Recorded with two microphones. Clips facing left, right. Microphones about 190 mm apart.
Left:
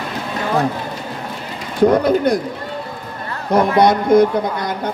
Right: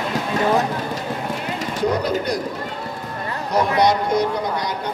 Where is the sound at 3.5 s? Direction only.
55° left (ahead or behind).